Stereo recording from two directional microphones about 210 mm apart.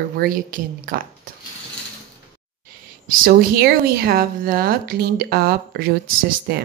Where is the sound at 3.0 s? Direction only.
45° right (ahead or behind).